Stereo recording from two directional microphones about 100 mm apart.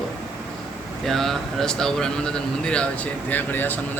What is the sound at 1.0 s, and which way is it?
Speech, 5° left (ahead or behind).